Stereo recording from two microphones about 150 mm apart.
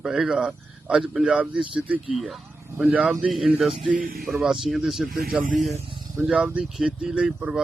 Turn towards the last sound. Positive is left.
turn(degrees=-15)  # may be behind; listen again after turning